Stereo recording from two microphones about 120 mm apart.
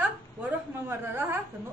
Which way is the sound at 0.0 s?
15° right (ahead or behind).